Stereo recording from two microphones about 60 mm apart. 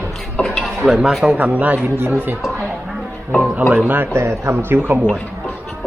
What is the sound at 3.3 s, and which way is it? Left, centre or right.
Music, right.